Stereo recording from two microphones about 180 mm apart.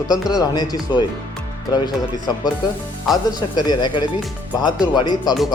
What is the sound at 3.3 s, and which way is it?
Speech, 20° left (ahead or behind).